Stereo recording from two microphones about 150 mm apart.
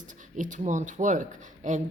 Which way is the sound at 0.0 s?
60° right (ahead or behind).